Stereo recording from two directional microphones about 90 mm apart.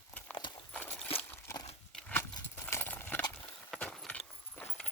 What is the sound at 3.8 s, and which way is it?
Clip-clop, 10° left (ahead or behind).